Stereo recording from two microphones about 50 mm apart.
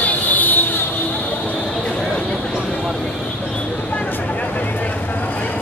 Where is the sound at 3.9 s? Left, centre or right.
Left.